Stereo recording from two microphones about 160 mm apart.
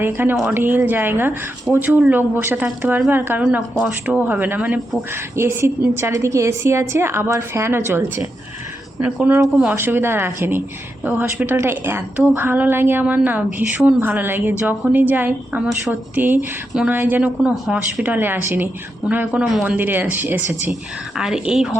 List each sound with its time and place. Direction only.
0.0 s a woman's voice: 15° right (ahead or behind)